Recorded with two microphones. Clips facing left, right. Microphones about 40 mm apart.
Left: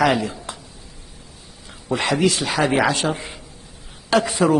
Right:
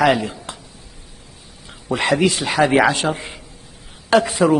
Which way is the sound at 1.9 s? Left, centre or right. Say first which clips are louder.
Right 2 dB; right.